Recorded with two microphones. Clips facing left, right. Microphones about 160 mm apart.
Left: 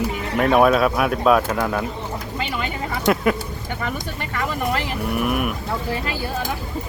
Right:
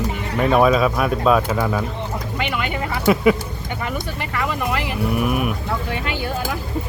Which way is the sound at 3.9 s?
45° left (ahead or behind).